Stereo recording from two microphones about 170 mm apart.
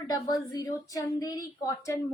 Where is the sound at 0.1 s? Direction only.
20° left (ahead or behind).